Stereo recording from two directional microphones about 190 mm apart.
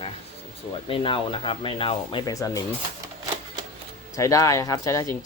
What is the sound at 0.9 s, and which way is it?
Speech, 30° left (ahead or behind).